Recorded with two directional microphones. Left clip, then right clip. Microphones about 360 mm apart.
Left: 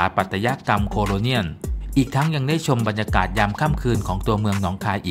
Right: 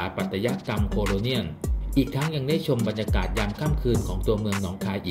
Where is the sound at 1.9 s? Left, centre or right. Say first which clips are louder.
Left 4 dB; left.